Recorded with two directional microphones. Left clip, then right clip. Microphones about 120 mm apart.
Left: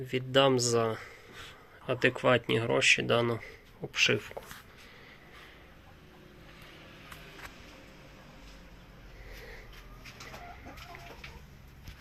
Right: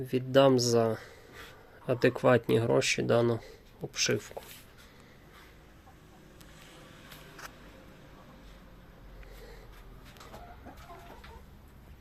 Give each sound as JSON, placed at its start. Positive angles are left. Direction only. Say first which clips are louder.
{"t": 0.0, "sound": "speech", "louder": "right 2 dB", "side_deg": -55}
{"t": 3.9, "sound": "speech", "louder": "left 4 dB", "side_deg": -20}